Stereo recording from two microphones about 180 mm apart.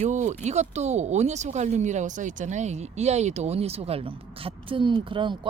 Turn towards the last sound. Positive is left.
turn(degrees=-25)  # may be behind; listen again after turning